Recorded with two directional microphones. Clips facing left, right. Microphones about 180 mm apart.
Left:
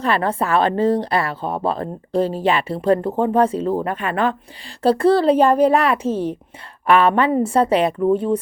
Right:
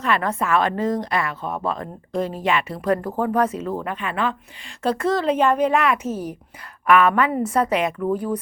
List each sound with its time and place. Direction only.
0.0 s a woman's voice: 30° left (ahead or behind)
3.9 s speech: 45° left (ahead or behind)
4.8 s a woman's voice: 35° left (ahead or behind)